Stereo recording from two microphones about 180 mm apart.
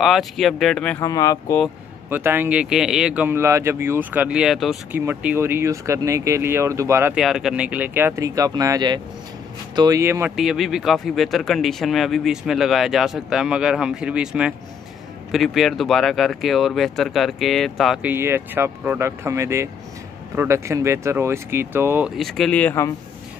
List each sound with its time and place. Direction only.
0.0 s speech: centre (ahead or behind)
1.0 s speech: 20° left (ahead or behind)
2.0 s speech: 10° right (ahead or behind)
4.9 s speech: 10° right (ahead or behind)
7.2 s speech: centre (ahead or behind)
10.3 s speech: centre (ahead or behind)